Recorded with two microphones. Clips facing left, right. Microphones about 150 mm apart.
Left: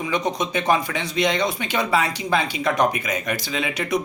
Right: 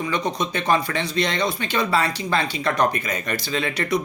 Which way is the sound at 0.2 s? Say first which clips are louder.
Left 1 dB; 20° left (ahead or behind).